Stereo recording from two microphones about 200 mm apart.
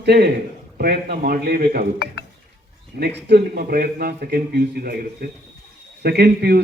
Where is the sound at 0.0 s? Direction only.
55° right (ahead or behind).